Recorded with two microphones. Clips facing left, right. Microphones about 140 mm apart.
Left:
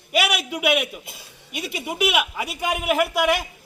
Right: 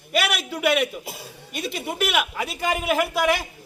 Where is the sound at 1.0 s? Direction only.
55° right (ahead or behind).